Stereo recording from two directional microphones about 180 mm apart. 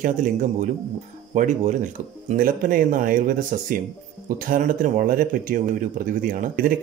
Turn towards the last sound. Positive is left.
turn(degrees=-50)  # may be behind; listen again after turning